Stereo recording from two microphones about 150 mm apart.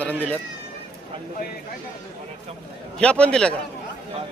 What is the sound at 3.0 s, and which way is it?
Speech, 5° left (ahead or behind).